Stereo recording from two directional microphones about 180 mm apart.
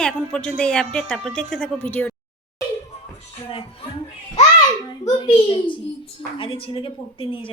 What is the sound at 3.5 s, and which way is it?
Speech, 30° left (ahead or behind).